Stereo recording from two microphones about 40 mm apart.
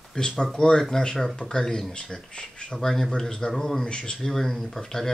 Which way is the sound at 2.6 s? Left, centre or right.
Centre.